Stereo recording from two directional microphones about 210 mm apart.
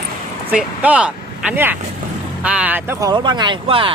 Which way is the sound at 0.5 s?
5° right (ahead or behind).